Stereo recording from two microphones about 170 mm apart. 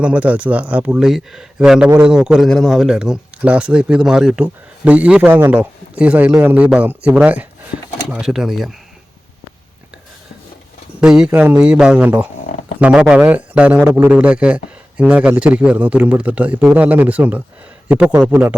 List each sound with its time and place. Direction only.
0.0 s a man's voice: 10° right (ahead or behind)
7.7 s speech: 60° left (ahead or behind)
8.1 s speech: 5° right (ahead or behind)
11.0 s a man's voice: 5° right (ahead or behind)